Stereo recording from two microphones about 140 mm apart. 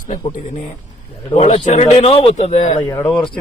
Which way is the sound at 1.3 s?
50° left (ahead or behind).